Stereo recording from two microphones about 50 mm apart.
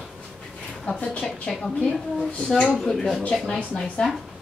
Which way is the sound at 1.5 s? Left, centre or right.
Centre.